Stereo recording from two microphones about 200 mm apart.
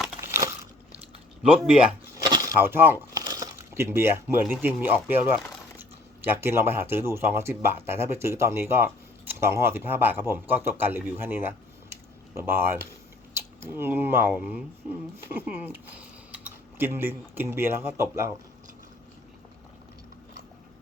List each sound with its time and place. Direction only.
0.2 s crushing: 15° right (ahead or behind)
1.4 s speech: 5° right (ahead or behind)
2.2 s a sound: 20° right (ahead or behind)
2.6 s speech: 10° right (ahead or behind)
3.2 s a sound: 15° right (ahead or behind)
4.6 s a man's voice: 10° right (ahead or behind)
6.3 s a man's voice: 10° right (ahead or behind)